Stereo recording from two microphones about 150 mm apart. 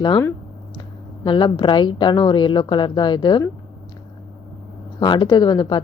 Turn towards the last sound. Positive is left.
turn(degrees=30)  # may be behind; listen again after turning